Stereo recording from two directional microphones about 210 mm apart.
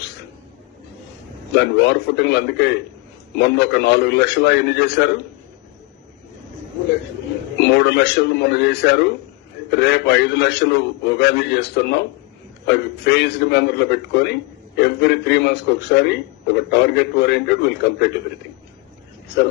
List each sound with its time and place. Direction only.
1.5 s a man's voice: 55° left (ahead or behind)
7.6 s a man's voice: 55° left (ahead or behind)